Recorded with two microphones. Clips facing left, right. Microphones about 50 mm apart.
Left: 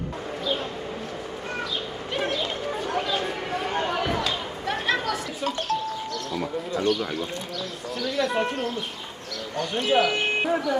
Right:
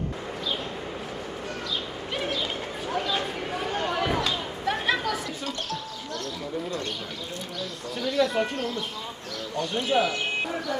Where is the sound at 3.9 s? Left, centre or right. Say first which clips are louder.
Even; centre.